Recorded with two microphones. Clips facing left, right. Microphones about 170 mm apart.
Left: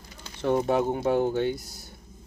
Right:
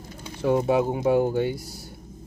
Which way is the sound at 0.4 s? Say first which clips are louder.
Right 2 dB; 5° right (ahead or behind).